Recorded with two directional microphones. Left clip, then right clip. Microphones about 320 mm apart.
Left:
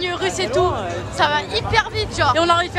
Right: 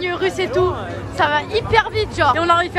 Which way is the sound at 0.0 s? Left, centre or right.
Centre.